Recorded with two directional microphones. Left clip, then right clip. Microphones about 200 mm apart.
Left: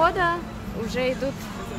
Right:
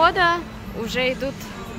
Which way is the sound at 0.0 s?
10° right (ahead or behind).